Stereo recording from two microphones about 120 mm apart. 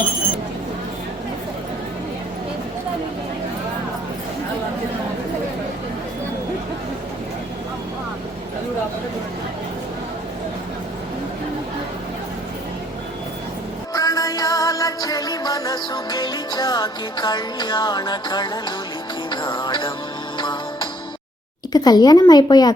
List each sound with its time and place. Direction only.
13.9 s music: 30° left (ahead or behind)
21.7 s speech: 35° left (ahead or behind)